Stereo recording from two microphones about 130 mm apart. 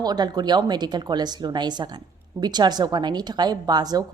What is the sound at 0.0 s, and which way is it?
A woman's voice, 30° right (ahead or behind).